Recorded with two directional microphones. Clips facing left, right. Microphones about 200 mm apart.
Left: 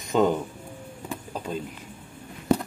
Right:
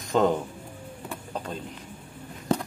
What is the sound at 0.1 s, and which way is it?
Speech, centre (ahead or behind).